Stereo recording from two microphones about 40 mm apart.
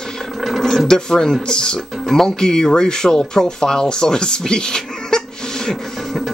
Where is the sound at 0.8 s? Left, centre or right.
Centre.